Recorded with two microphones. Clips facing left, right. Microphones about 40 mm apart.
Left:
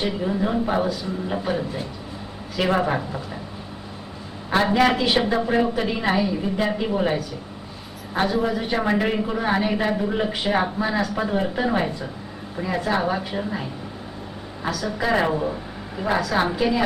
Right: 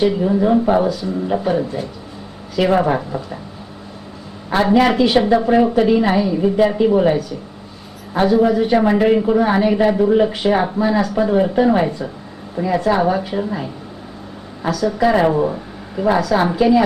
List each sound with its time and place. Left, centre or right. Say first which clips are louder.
0.0 s speech: right 8 dB; centre
4.5 s a woman's voice: right 5 dB; centre